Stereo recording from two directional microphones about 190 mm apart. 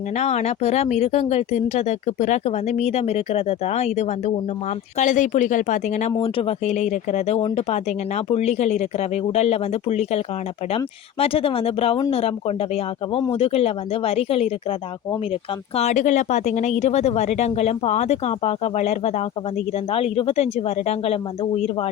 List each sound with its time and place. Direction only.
0.2 s speech: 35° left (ahead or behind)